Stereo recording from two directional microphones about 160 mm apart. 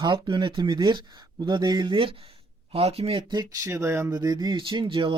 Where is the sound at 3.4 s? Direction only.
20° right (ahead or behind).